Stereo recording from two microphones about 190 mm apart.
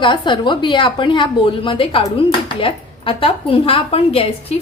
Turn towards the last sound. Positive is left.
turn(degrees=30)  # may be behind; listen again after turning